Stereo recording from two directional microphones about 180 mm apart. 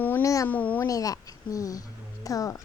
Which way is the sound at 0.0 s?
15° left (ahead or behind).